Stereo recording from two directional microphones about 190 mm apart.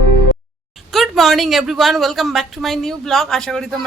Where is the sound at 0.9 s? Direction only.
Centre (ahead or behind).